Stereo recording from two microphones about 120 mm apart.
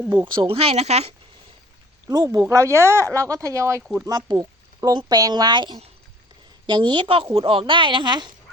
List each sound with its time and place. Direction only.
0.3 s speech: 45° right (ahead or behind); by 1.1 s 60° right (ahead or behind)
2.0 s speech: 30° right (ahead or behind)